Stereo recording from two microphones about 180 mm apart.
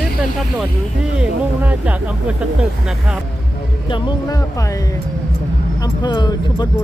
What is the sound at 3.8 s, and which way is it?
Speech, 25° left (ahead or behind).